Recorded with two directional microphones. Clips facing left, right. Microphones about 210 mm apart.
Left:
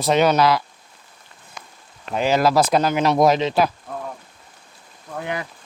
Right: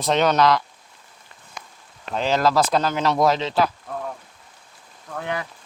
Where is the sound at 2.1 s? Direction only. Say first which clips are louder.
Left 2 dB; 10° left (ahead or behind).